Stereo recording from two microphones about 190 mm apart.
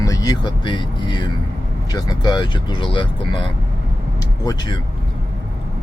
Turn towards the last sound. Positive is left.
turn(degrees=20)  # may be behind; listen again after turning